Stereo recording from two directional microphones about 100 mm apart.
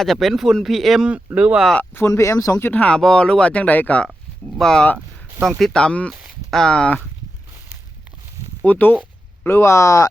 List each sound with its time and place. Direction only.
0.0 s speech: centre (ahead or behind)
1.7 s speech: 20° left (ahead or behind)
6.1 s speech: 15° right (ahead or behind)
6.5 s speech: 5° left (ahead or behind)
8.6 s speech: 15° left (ahead or behind)